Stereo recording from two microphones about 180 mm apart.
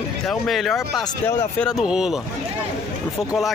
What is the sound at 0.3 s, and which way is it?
Speech, centre (ahead or behind).